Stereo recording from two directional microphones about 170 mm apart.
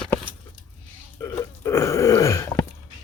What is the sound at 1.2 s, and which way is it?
Burping, 20° left (ahead or behind).